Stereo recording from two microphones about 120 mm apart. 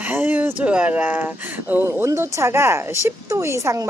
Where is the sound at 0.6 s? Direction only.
10° right (ahead or behind).